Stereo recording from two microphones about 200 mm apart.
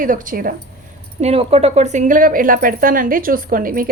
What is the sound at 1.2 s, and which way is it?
Speech, 30° right (ahead or behind).